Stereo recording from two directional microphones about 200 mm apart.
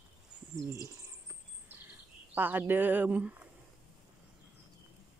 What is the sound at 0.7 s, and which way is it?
Bird, 15° right (ahead or behind).